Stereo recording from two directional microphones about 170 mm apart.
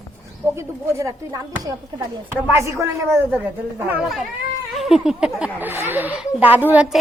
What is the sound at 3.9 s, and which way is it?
A woman's voice, 5° right (ahead or behind).